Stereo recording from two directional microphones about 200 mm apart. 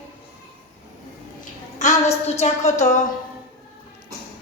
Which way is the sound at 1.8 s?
35° left (ahead or behind).